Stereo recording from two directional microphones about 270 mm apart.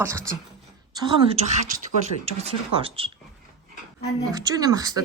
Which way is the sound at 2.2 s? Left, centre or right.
Right.